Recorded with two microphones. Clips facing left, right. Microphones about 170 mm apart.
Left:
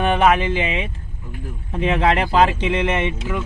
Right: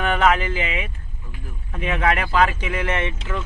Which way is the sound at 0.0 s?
25° left (ahead or behind).